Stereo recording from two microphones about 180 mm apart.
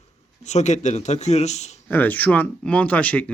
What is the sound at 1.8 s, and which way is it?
Speech, 10° left (ahead or behind).